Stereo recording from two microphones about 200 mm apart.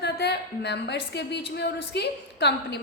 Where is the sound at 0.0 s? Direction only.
55° left (ahead or behind).